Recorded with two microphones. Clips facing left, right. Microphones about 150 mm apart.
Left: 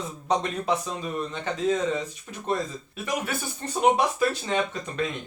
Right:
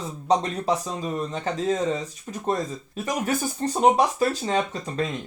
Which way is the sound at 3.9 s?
35° right (ahead or behind).